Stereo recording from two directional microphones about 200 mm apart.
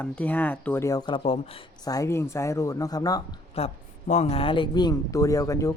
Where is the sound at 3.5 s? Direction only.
30° left (ahead or behind).